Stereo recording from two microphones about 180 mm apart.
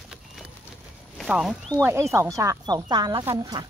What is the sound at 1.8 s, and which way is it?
Speech, 15° right (ahead or behind).